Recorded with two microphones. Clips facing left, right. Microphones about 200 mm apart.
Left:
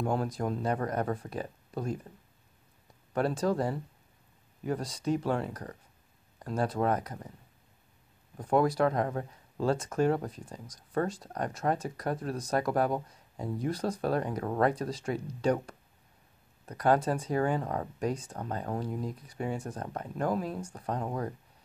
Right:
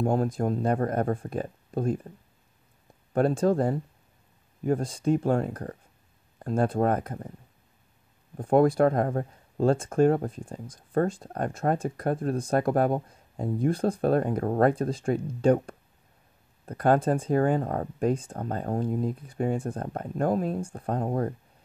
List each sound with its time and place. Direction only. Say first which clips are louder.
0.0 s speech: right 5 dB; 45° right (ahead or behind)
3.2 s speech: right 6 dB; 50° right (ahead or behind)
8.5 s speech: right 5 dB; 50° right (ahead or behind)
16.7 s speech: right 4 dB; 50° right (ahead or behind)
20.9 s speech: right 6 dB; 35° right (ahead or behind)